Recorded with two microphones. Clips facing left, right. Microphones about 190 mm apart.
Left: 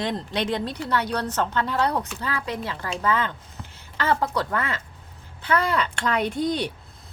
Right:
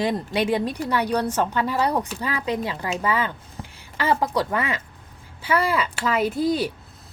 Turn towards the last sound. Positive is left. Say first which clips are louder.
# right 3 dB
turn(degrees=-5)  # may be behind; listen again after turning